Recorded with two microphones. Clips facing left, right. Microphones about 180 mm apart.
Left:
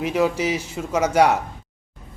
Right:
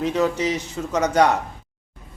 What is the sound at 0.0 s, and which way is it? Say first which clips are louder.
A man's voice: even; 10° left (ahead or behind).